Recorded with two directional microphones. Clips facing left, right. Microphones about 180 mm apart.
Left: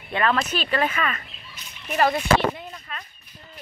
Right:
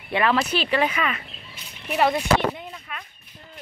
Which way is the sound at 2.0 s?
Centre (ahead or behind).